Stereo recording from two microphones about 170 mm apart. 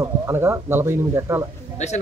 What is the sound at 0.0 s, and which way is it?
Speech, 15° right (ahead or behind).